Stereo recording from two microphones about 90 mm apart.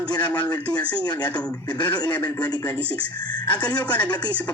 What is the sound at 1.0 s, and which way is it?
A man's voice, 50° left (ahead or behind).